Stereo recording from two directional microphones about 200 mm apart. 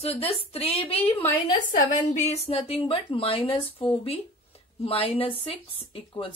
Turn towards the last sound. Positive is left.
turn(degrees=25)  # may be behind; listen again after turning